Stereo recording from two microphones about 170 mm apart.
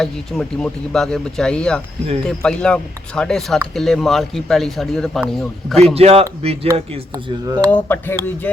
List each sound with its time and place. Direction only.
0.0 s a man's voice: centre (ahead or behind)
5.7 s speech: 35° right (ahead or behind)
7.4 s speech: 20° right (ahead or behind)
7.7 s speech: 10° left (ahead or behind)